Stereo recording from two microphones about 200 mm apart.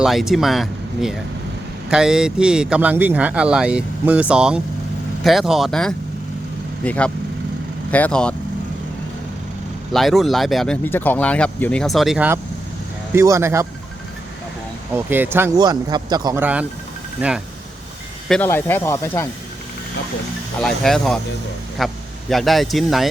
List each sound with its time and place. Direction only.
0.0 s speech: centre (ahead or behind)
9.9 s a man's voice: centre (ahead or behind)
14.9 s a man's voice: 10° right (ahead or behind)
15.5 s speech: 20° right (ahead or behind)
16.4 s a man's voice: 5° right (ahead or behind)
18.3 s speech: 10° left (ahead or behind)
20.6 s a man's voice: centre (ahead or behind)